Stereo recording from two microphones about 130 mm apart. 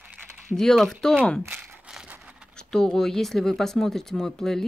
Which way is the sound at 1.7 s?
10° right (ahead or behind).